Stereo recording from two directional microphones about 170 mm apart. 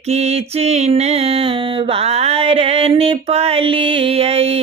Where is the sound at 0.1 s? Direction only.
35° right (ahead or behind).